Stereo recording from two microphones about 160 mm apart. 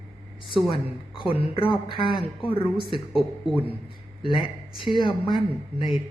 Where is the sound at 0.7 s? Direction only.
35° left (ahead or behind).